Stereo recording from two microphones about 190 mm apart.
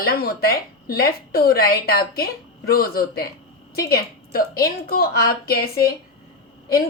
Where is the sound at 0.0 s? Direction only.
55° left (ahead or behind).